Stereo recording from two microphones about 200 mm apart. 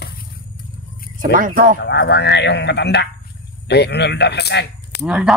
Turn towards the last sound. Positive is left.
turn(degrees=-5)  # may be behind; listen again after turning